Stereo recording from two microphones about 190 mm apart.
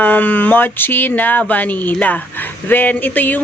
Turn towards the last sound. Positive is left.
turn(degrees=10)  # may be behind; listen again after turning